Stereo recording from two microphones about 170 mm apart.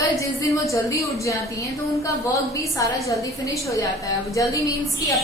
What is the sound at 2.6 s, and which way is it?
A woman's voice, 20° left (ahead or behind).